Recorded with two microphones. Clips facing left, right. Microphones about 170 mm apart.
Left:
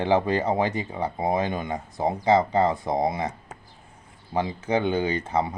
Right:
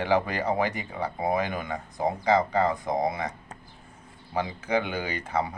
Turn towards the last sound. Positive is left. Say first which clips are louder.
# left 4 dB
turn(degrees=25)  # may be behind; listen again after turning